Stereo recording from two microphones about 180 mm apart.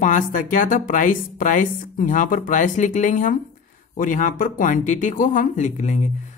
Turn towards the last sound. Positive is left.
turn(degrees=45)  # may be behind; listen again after turning